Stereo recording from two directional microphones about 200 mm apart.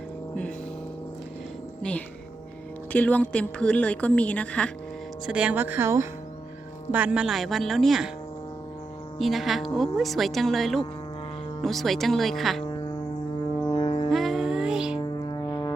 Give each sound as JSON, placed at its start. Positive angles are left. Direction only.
{"t": 1.8, "sound": "a woman's voice", "side_deg": 5}
{"t": 5.2, "sound": "speech", "side_deg": -5}
{"t": 9.1, "sound": "speech", "side_deg": 0}
{"t": 13.7, "sound": "music", "side_deg": 25}
{"t": 14.1, "sound": "music", "side_deg": 0}
{"t": 15.3, "sound": "music", "side_deg": 25}